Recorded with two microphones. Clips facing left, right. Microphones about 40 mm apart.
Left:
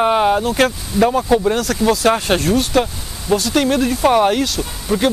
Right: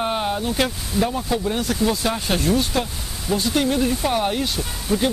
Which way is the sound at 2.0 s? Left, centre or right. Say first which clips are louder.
Left 6 dB; left.